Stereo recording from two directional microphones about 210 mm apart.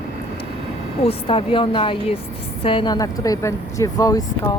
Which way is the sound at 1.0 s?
25° left (ahead or behind).